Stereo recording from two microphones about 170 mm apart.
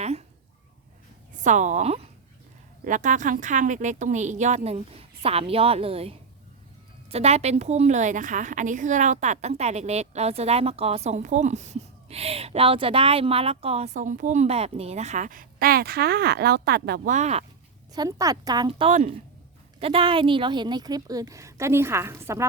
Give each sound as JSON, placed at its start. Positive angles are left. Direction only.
{"t": 0.0, "sound": "a sound", "side_deg": -40}
{"t": 1.4, "sound": "a woman's voice", "side_deg": -45}
{"t": 17.1, "sound": "speech", "side_deg": -40}
{"t": 17.9, "sound": "a woman's voice", "side_deg": -20}